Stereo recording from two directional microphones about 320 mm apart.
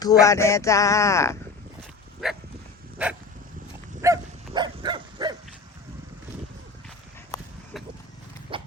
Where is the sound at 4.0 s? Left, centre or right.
Centre.